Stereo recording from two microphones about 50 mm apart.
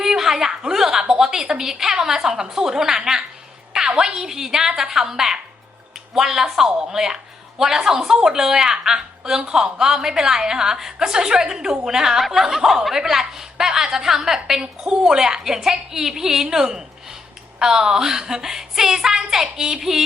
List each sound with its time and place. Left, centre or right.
0.0 s a woman's voice: centre